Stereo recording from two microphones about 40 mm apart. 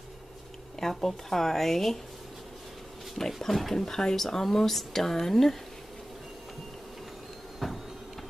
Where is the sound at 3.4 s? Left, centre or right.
Centre.